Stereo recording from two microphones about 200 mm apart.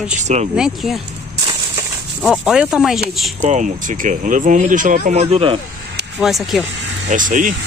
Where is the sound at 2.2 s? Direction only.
Centre (ahead or behind).